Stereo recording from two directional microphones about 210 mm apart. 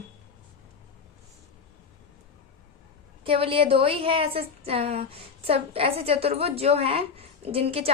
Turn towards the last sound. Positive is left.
turn(degrees=-25)  # may be behind; listen again after turning